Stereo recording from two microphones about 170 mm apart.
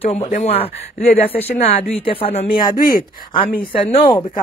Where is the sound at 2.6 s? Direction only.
55° left (ahead or behind).